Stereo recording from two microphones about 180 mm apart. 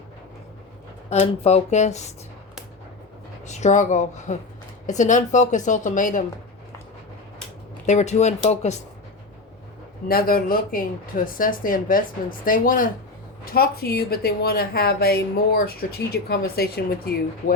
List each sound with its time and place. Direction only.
1.1 s speech: 35° left (ahead or behind)
3.4 s speech: 40° left (ahead or behind)
7.9 s speech: 40° left (ahead or behind)
10.1 s speech: 55° left (ahead or behind)